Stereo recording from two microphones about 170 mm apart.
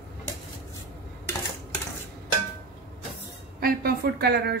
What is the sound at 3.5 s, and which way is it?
A woman's voice, 65° right (ahead or behind).